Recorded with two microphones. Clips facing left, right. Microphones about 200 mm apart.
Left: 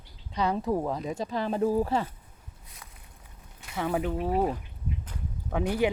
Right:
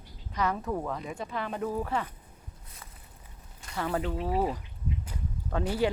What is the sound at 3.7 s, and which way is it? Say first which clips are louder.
Speech: left 2 dB; 10° left (ahead or behind).